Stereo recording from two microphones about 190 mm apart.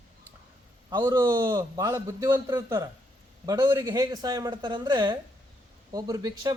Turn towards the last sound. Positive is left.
turn(degrees=-20)  # may be behind; listen again after turning